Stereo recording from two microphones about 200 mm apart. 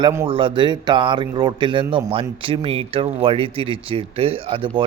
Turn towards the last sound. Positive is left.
turn(degrees=-25)  # may be behind; listen again after turning